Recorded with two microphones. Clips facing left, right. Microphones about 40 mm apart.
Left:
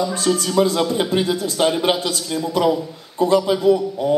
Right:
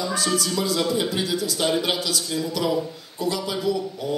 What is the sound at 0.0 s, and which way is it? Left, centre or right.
A man's voice, left.